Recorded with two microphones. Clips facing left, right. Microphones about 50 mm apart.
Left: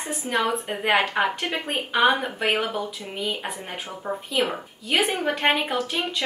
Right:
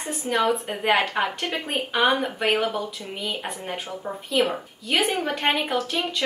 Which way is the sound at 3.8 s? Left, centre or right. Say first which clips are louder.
Left 1 dB; centre.